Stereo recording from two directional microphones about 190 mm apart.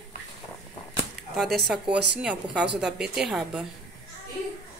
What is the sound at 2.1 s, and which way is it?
Speech, 5° right (ahead or behind).